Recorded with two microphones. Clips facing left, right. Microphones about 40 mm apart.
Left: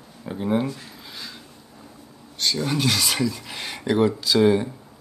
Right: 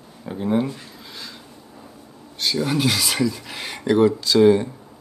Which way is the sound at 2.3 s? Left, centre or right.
Centre.